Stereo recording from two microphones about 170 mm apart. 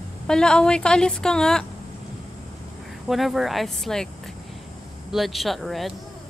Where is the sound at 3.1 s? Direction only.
Centre (ahead or behind).